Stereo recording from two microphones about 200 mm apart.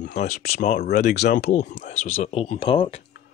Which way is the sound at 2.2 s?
30° left (ahead or behind).